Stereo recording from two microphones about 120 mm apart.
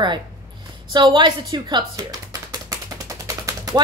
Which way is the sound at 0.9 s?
40° right (ahead or behind).